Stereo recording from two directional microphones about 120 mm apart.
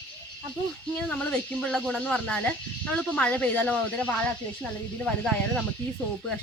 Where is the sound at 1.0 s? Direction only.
10° left (ahead or behind).